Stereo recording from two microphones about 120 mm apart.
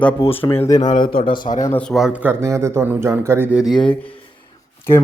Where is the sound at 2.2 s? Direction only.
20° right (ahead or behind).